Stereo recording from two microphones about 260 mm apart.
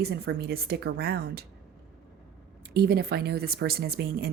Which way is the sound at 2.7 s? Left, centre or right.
Right.